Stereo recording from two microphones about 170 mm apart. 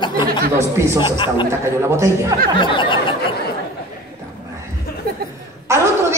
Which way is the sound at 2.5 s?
30° left (ahead or behind).